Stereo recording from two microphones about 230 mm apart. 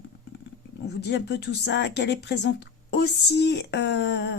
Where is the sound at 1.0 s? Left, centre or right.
Left.